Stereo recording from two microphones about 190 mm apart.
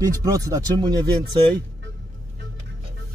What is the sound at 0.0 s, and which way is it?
Speech, 20° right (ahead or behind).